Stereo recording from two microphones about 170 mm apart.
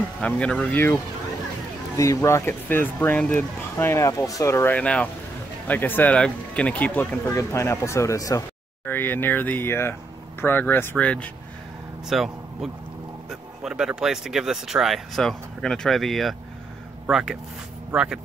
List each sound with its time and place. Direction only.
0.2 s speech: 5° left (ahead or behind)